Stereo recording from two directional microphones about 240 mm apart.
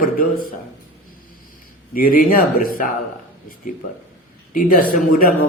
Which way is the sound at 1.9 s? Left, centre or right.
Left.